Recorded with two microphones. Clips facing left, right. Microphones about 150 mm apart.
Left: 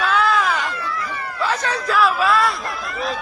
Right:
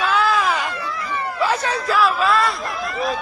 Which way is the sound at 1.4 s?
10° right (ahead or behind).